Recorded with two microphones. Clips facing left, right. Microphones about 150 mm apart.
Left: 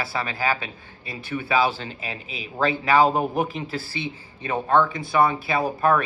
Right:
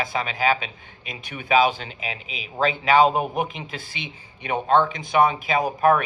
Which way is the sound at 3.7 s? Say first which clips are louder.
Left 5 dB; 35° left (ahead or behind).